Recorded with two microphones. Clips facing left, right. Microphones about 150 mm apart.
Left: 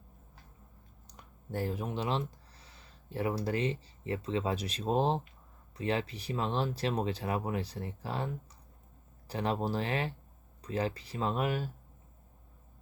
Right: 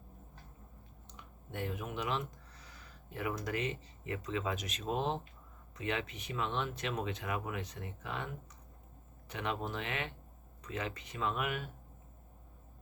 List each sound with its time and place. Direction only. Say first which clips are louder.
1.0 s speech: left 4 dB; 40° left (ahead or behind)